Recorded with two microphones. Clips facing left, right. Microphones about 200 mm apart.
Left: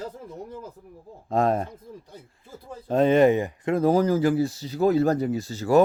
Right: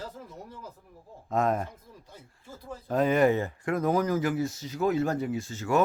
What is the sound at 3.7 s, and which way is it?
Speech, 30° left (ahead or behind).